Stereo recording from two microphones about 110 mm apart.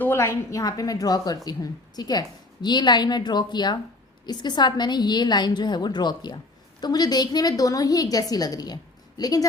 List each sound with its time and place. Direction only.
0.0 s a woman's voice: 25° left (ahead or behind)